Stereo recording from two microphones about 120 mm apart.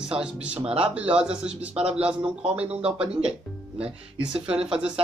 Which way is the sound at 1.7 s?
55° right (ahead or behind).